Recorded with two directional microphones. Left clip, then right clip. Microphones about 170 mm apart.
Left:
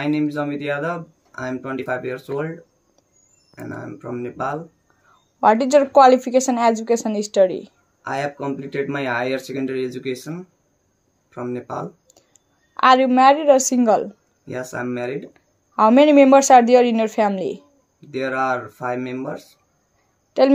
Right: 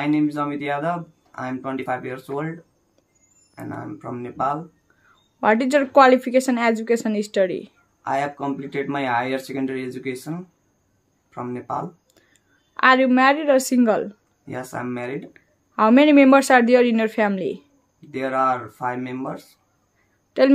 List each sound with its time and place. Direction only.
0.3 s speech: 5° left (ahead or behind)
3.5 s speech: centre (ahead or behind)
5.4 s a woman's voice: 10° right (ahead or behind)
8.0 s speech: 5° left (ahead or behind)
12.7 s a woman's voice: 15° right (ahead or behind)
14.5 s speech: 5° left (ahead or behind)
15.3 s a woman's voice: 15° right (ahead or behind)
18.1 s speech: 5° left (ahead or behind)